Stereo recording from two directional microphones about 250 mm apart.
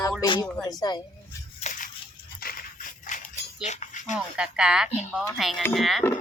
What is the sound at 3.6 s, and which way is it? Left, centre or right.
Music, left.